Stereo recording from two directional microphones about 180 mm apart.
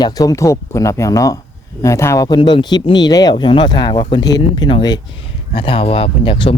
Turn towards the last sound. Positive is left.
turn(degrees=30)  # may be behind; listen again after turning